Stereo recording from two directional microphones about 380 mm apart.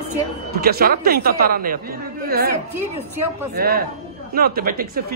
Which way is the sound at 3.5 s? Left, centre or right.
Right.